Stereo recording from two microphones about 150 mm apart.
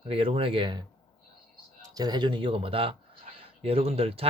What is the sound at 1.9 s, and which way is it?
Speech, 30° right (ahead or behind).